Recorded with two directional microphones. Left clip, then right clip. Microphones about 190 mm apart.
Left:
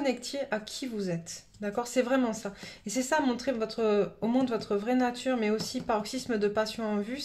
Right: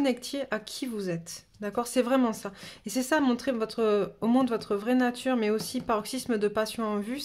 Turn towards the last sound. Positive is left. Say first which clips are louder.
# right 1 dB
turn(degrees=-40)  # may be behind; listen again after turning